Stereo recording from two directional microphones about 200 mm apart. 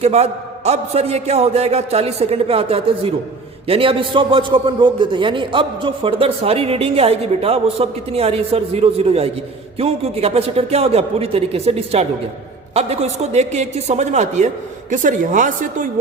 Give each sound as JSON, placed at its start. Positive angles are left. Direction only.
{"t": 0.0, "sound": "a man's voice", "side_deg": -30}